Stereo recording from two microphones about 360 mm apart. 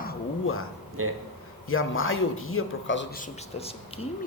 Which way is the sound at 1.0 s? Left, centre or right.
Right.